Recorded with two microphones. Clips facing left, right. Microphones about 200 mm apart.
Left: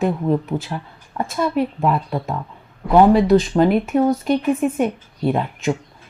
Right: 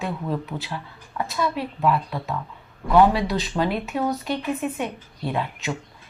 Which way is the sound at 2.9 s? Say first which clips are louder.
Left 6 dB; 50° left (ahead or behind).